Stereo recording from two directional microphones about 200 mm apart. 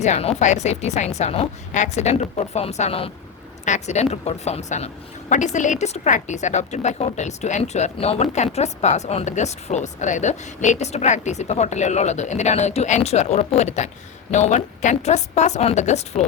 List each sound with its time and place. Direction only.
0.0 s a woman's voice: 35° left (ahead or behind)